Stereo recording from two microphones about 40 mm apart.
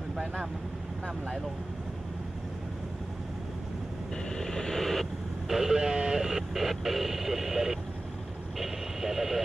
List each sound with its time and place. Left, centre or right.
4.4 s vehicle: centre
5.5 s vehicle: centre
5.8 s radio: right
6.2 s radio: centre
8.5 s vehicle: centre